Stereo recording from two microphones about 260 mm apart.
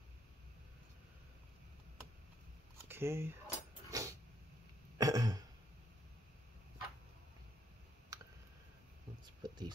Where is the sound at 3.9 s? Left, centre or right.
Centre.